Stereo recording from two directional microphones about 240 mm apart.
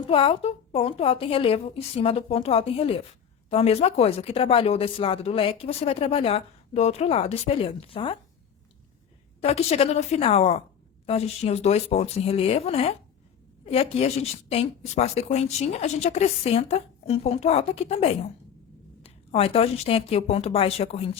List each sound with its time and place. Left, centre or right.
0.1 s speech: left
9.4 s speech: left